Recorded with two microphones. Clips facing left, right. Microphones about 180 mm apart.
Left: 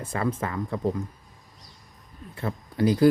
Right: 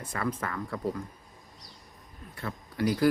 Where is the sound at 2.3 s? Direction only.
25° left (ahead or behind).